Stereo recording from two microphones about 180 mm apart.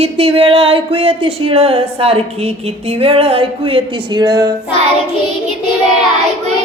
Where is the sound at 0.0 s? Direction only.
30° right (ahead or behind).